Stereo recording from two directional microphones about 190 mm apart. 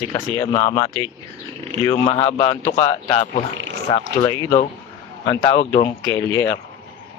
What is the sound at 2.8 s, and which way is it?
Speech, 20° left (ahead or behind).